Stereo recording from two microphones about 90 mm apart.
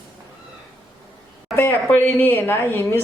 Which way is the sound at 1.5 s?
20° left (ahead or behind).